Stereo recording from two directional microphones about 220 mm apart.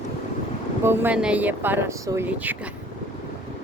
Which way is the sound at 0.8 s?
10° right (ahead or behind).